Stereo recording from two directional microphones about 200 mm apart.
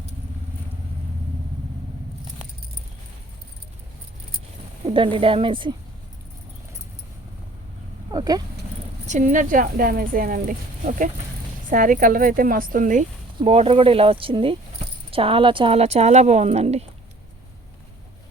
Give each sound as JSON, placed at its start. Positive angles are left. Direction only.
{"t": 4.9, "sound": "speech", "side_deg": -25}
{"t": 8.1, "sound": "a sound", "side_deg": -20}
{"t": 9.0, "sound": "speech", "side_deg": -35}